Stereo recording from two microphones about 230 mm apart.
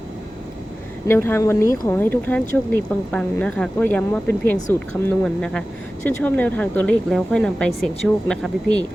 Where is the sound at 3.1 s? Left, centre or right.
Centre.